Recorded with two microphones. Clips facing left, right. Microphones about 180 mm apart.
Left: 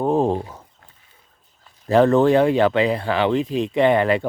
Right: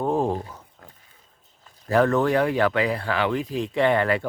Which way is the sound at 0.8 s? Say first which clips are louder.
Right 6 dB; 40° right (ahead or behind).